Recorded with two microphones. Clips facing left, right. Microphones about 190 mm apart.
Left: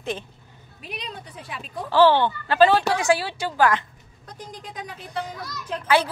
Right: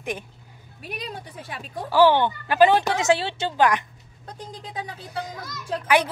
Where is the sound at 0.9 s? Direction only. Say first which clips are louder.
Right 2 dB; 45° right (ahead or behind).